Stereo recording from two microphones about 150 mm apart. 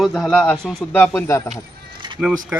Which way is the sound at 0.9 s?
15° left (ahead or behind).